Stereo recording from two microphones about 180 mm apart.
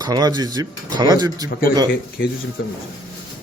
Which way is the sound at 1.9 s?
60° left (ahead or behind).